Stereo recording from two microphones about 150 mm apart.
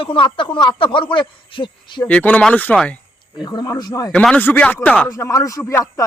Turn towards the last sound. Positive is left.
turn(degrees=15)  # may be behind; listen again after turning